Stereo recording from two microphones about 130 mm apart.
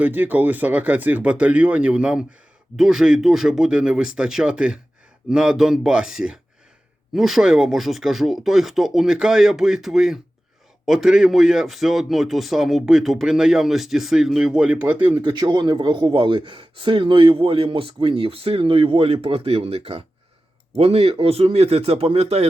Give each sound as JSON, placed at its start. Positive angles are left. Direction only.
{"t": 0.0, "sound": "speech", "side_deg": -15}
{"t": 15.2, "sound": "a man's voice", "side_deg": -35}